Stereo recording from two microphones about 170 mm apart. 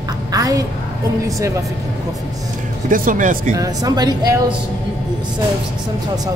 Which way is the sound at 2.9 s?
50° right (ahead or behind).